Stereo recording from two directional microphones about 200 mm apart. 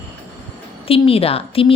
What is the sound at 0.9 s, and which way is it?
Speech, 30° left (ahead or behind).